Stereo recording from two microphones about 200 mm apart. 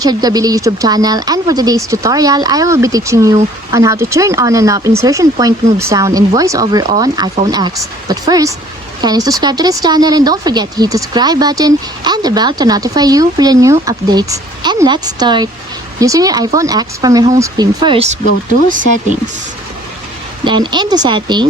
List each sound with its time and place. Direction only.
0.0 s speech: 20° right (ahead or behind)
20.4 s speech: 20° right (ahead or behind)